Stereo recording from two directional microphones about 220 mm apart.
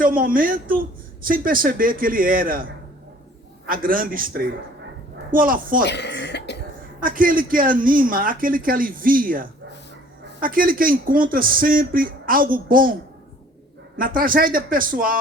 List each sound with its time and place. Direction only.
0.0 s speech: 40° right (ahead or behind)
3.7 s speech: 40° right (ahead or behind)
5.8 s cough: 50° left (ahead or behind)
7.0 s speech: 40° right (ahead or behind)